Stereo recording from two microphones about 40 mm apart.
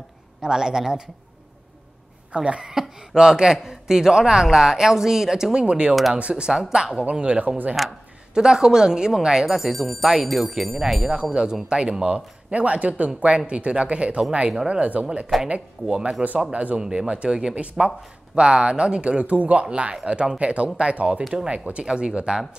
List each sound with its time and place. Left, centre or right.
0.4 s speech: centre
2.3 s speech: right
2.7 s speech: centre; by 7.5 s right
7.8 s speech: centre
8.4 s speech: centre
11.2 s speech: centre